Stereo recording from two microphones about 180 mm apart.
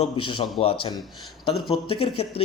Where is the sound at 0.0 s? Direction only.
30° left (ahead or behind).